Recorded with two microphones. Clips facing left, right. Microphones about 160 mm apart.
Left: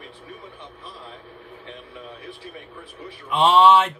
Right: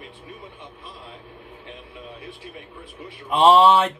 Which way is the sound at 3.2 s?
40° right (ahead or behind).